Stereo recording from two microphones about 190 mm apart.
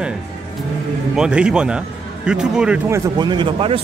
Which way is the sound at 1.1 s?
5° right (ahead or behind).